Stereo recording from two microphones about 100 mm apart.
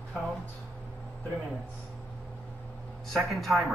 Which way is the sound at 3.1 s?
Centre (ahead or behind).